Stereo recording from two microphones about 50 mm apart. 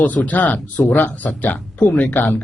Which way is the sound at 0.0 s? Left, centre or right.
Left.